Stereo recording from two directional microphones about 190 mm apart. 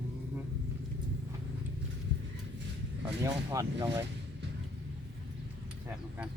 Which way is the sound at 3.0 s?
15° right (ahead or behind).